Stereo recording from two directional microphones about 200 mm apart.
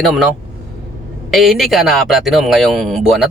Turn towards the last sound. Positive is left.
turn(degrees=0)  # may be behind; listen again after turning